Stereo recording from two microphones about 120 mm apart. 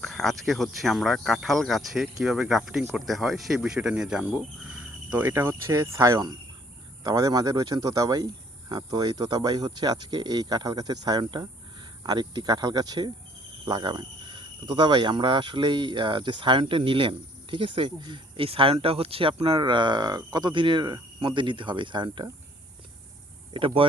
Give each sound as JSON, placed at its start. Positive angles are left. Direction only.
{"t": 0.0, "sound": "speech", "side_deg": 0}
{"t": 23.6, "sound": "speech", "side_deg": -50}